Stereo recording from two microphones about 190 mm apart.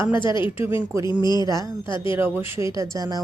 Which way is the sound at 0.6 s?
15° right (ahead or behind).